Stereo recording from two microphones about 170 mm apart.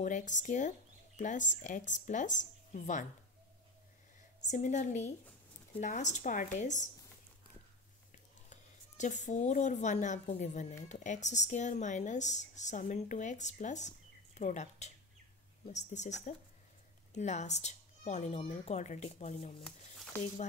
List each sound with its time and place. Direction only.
0.0 s speech: 45° left (ahead or behind)
4.4 s speech: 45° left (ahead or behind)
8.5 s speech: 45° left (ahead or behind)
19.6 s speech: 5° left (ahead or behind)